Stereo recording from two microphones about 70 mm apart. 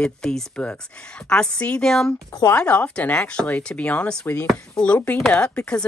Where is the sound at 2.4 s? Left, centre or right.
Left.